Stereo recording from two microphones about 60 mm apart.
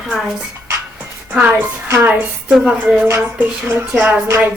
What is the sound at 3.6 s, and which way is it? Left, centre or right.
Speech, right.